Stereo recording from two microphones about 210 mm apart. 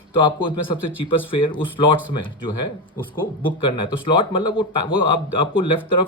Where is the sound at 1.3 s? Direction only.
25° left (ahead or behind).